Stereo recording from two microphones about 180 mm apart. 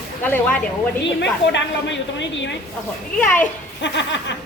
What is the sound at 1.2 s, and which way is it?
A woman's voice, 80° left.